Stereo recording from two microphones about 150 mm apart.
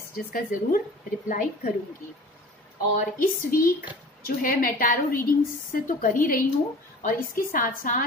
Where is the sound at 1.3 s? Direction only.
60° left (ahead or behind).